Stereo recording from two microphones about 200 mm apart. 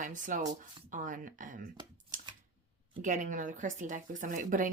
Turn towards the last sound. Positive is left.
turn(degrees=-40)  # may be behind; listen again after turning